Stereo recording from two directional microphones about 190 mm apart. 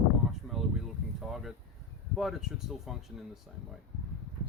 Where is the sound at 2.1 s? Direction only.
Centre (ahead or behind).